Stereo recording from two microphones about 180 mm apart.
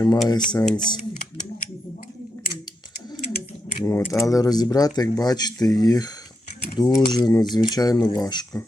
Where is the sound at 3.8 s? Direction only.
15° left (ahead or behind).